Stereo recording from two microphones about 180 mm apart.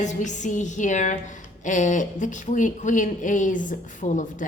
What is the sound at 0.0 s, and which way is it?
A man's voice, 40° left (ahead or behind).